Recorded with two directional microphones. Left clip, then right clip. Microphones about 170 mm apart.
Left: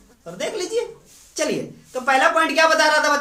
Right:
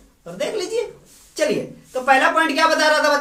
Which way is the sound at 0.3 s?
15° left (ahead or behind).